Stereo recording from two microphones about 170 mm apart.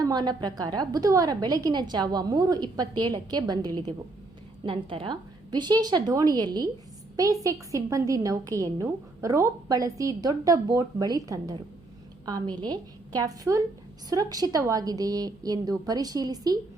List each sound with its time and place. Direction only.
0.0 s a woman's voice: 25° right (ahead or behind)